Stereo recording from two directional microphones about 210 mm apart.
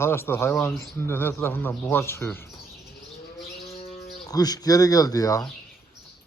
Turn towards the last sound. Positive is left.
turn(degrees=15)  # may be behind; listen again after turning